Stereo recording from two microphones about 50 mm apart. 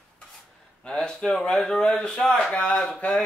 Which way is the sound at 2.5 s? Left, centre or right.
Left.